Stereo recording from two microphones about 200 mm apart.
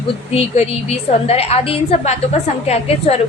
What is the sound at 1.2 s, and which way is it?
A woman's voice, 30° left (ahead or behind).